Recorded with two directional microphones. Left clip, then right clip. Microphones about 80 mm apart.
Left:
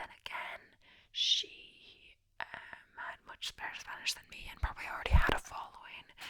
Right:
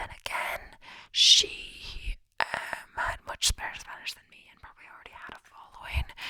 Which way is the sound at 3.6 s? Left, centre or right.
Centre.